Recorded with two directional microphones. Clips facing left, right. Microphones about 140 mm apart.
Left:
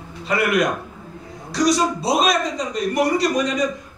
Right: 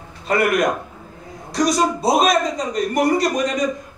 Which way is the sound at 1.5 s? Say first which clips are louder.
Even; 50° right (ahead or behind).